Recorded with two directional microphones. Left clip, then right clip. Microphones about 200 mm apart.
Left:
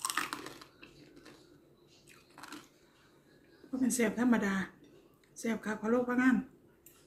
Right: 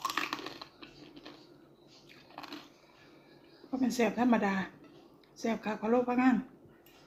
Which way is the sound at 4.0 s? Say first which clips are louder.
Right 3 dB; 5° left (ahead or behind).